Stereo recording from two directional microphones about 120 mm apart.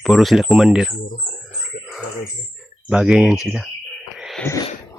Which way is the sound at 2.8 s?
5° right (ahead or behind).